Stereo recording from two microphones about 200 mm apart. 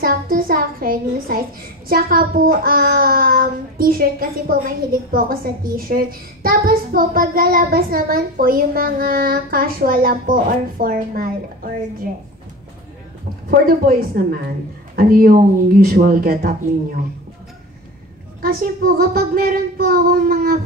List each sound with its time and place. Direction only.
0.0 s a child's voice: 45° right (ahead or behind)
13.5 s a child's voice: 45° right (ahead or behind)
18.4 s a child's voice: 50° right (ahead or behind)